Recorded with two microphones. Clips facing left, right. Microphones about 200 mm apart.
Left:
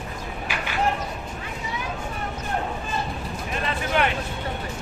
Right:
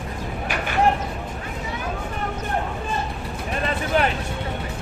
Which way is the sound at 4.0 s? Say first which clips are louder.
Right 2 dB; 40° right (ahead or behind).